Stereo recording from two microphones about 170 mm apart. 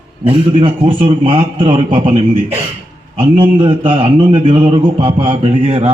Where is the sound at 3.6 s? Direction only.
30° right (ahead or behind).